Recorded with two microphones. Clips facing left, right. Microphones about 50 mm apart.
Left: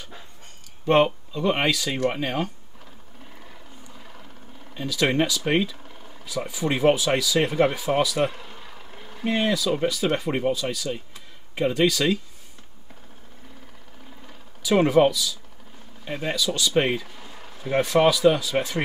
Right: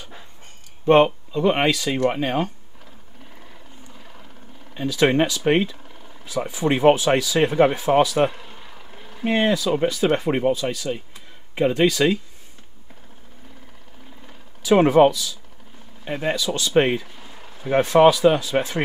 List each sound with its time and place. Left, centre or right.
1.3 s speech: right
3.3 s vehicle: centre
4.7 s speech: right
5.9 s a sound: centre
6.2 s speech: right
8.3 s vehicle: centre
9.2 s speech: right
14.6 s speech: right
17.0 s vehicle: centre
17.6 s speech: right